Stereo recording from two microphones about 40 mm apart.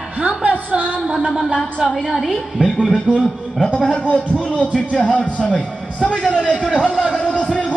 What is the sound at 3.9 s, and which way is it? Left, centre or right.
Speech, left.